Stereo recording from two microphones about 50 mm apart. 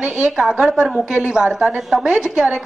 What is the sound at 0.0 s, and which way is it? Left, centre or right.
A woman's voice, centre.